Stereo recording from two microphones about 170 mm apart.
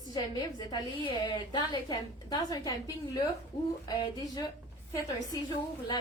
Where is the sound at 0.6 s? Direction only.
25° left (ahead or behind).